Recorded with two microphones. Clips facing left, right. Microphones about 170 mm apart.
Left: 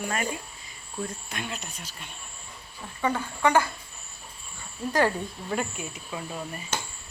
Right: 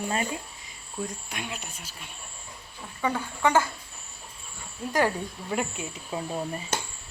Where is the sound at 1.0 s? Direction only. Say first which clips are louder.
Even; 10° right (ahead or behind).